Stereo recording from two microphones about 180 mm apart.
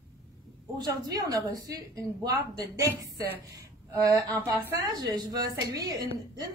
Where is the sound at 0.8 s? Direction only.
20° right (ahead or behind).